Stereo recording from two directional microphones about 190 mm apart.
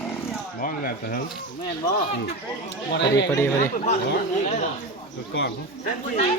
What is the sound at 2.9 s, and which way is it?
Speech, 65° left (ahead or behind).